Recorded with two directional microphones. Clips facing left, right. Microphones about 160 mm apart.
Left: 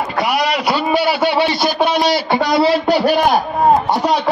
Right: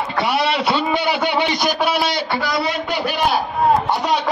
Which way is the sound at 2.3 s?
25° left (ahead or behind).